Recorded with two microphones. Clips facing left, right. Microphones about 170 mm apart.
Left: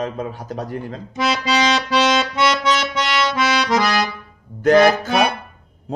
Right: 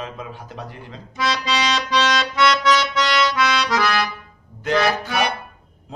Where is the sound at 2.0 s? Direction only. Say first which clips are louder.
Even; 20° left (ahead or behind).